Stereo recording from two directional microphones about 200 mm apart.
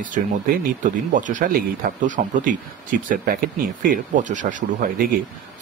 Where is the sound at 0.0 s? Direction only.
45° right (ahead or behind).